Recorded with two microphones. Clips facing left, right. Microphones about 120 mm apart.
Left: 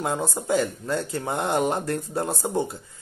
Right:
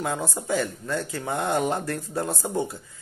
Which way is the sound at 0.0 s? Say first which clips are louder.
Left 2 dB; 30° left (ahead or behind).